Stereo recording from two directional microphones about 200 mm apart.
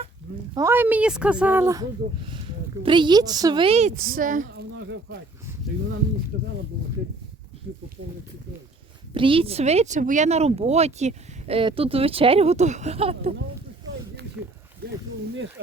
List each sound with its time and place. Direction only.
0.5 s a woman's voice: 15° right (ahead or behind); by 3.9 s 30° right (ahead or behind)
4.1 s a woman's voice: 40° right (ahead or behind)
6.3 s speech: 55° right (ahead or behind)
9.1 s speech: 25° right (ahead or behind)
14.4 s a sound: 10° right (ahead or behind)
14.8 s a sound: 50° right (ahead or behind)